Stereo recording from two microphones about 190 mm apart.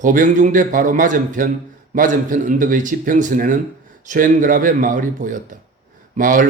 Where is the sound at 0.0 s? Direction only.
45° right (ahead or behind).